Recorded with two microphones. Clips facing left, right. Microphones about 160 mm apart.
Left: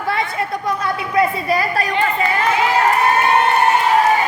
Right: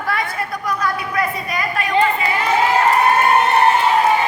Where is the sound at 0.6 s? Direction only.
25° left (ahead or behind).